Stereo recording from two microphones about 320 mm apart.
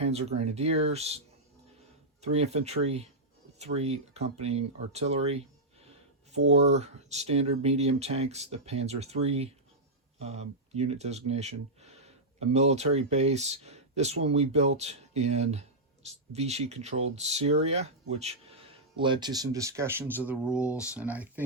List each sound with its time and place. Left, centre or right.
0.0 s speech: centre
2.2 s speech: centre